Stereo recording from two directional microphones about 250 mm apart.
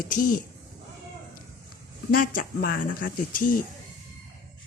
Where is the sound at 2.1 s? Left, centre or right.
Left.